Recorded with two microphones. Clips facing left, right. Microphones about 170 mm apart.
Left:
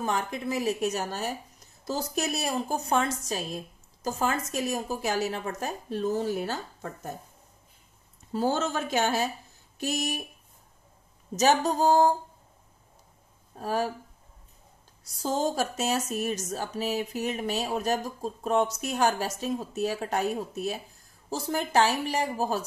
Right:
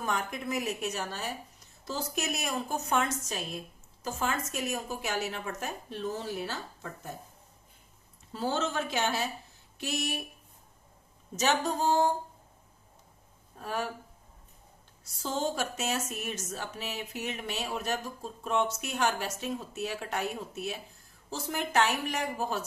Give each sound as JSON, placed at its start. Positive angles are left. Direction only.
{"t": 0.0, "sound": "speech", "side_deg": 30}
{"t": 8.3, "sound": "speech", "side_deg": 45}
{"t": 11.3, "sound": "speech", "side_deg": 40}
{"t": 13.6, "sound": "speech", "side_deg": 35}
{"t": 15.0, "sound": "speech", "side_deg": 40}